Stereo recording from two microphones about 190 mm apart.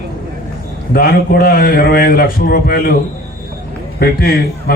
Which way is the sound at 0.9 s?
50° left (ahead or behind).